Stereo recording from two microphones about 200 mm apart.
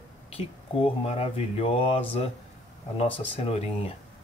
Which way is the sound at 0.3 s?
30° left (ahead or behind).